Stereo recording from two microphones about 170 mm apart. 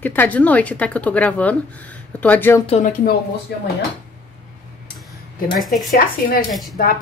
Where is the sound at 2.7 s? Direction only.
40° left (ahead or behind).